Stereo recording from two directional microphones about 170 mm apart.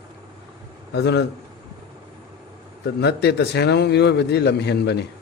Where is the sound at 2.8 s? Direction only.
75° left (ahead or behind).